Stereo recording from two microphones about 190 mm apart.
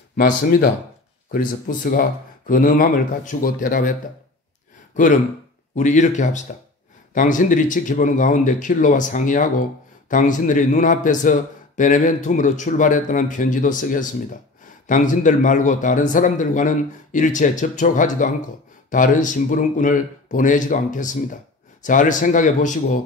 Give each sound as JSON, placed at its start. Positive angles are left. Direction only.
{"t": 0.1, "sound": "speech", "side_deg": 50}
{"t": 4.9, "sound": "speech", "side_deg": 45}